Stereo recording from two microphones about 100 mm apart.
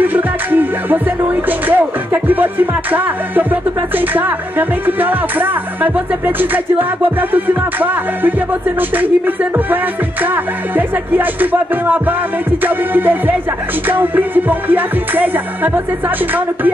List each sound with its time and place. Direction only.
0.0 s music: 20° right (ahead or behind)
3.9 s speech: 20° right (ahead or behind)
8.9 s music: 20° right (ahead or behind)
10.2 s speech: 20° right (ahead or behind)